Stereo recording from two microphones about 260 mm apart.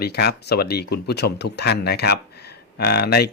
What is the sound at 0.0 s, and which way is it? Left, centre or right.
Speech, left.